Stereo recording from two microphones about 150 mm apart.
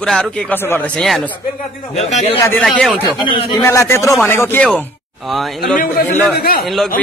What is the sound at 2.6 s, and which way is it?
Speech, 5° left (ahead or behind).